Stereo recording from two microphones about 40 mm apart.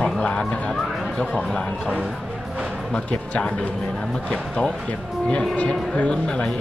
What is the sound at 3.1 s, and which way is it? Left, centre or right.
Speech, left.